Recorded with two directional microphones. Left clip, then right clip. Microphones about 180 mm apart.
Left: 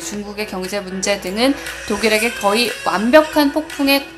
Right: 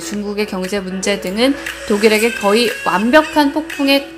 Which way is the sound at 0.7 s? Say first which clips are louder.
Right 1 dB; 15° right (ahead or behind).